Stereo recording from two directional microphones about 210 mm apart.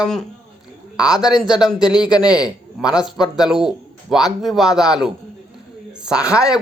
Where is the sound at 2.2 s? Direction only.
20° left (ahead or behind).